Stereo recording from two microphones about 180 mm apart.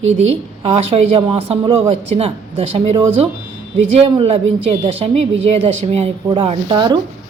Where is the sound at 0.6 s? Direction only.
30° right (ahead or behind).